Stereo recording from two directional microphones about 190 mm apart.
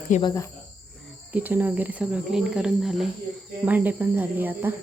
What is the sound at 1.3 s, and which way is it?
Speech, 10° right (ahead or behind).